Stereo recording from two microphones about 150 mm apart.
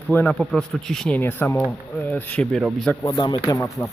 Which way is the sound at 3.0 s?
25° left (ahead or behind).